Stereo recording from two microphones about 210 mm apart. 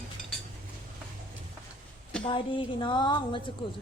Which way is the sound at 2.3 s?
25° left (ahead or behind).